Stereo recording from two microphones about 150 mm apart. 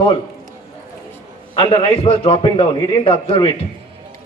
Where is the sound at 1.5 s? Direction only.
35° left (ahead or behind).